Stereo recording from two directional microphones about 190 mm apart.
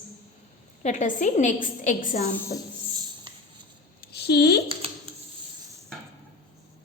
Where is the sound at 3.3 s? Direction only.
25° right (ahead or behind).